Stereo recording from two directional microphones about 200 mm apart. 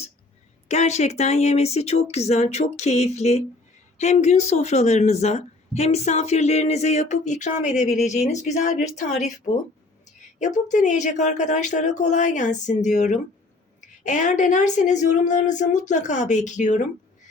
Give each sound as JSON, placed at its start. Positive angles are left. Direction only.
{"t": 0.7, "sound": "speech", "side_deg": 35}